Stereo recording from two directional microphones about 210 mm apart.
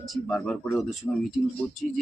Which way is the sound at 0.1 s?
Centre (ahead or behind).